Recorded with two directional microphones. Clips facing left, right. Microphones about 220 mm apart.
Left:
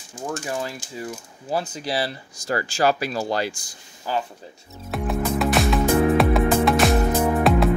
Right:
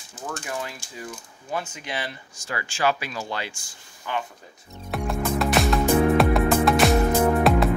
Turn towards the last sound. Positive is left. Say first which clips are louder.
# even
turn(degrees=0)  # may be behind; listen again after turning